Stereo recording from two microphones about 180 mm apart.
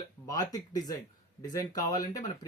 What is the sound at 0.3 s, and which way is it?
Speech, 20° left (ahead or behind).